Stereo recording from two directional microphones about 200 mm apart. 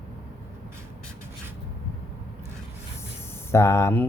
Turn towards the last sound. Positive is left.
turn(degrees=10)  # may be behind; listen again after turning